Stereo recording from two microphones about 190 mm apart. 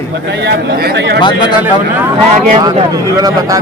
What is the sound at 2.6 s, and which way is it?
Speech, 20° right (ahead or behind).